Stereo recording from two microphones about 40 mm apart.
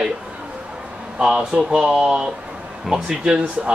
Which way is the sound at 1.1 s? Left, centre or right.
Centre.